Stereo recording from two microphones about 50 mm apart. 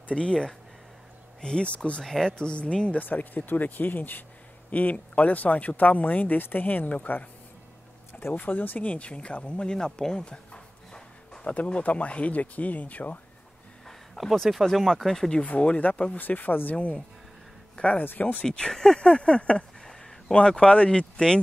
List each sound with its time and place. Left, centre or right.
0.1 s speech: centre
2.0 s speech: centre
2.3 s speech: left
3.0 s speech: left
4.6 s speech: left
8.4 s speech: left
13.8 s speech: centre
15.4 s speech: left
16.2 s speech: left
18.4 s speech: centre